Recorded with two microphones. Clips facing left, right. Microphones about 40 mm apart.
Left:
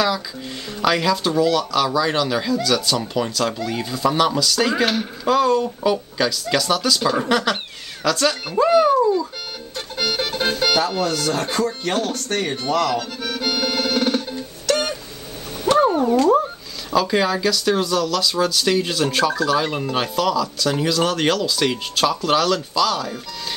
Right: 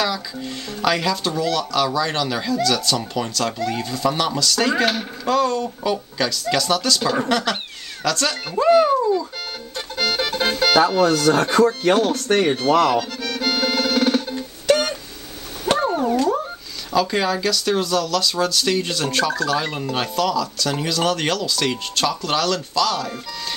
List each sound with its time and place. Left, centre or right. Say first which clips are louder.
0.0 s speech: left 2 dB; centre
9.0 s music: left 2 dB; centre
11.8 s speech: right 5 dB; centre
13.4 s music: right 2 dB; centre
14.7 s a sound: right 3 dB; centre
15.8 s a sound: left 5 dB; centre
16.9 s speech: left 1 dB; centre